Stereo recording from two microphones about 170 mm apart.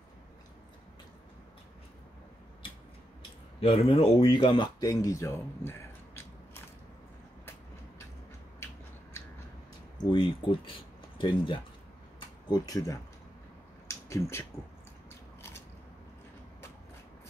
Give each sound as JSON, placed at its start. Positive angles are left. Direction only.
{"t": 3.6, "sound": "speech", "side_deg": 35}
{"t": 10.1, "sound": "speech", "side_deg": 30}
{"t": 13.8, "sound": "a sound", "side_deg": 15}
{"t": 15.0, "sound": "biting", "side_deg": 15}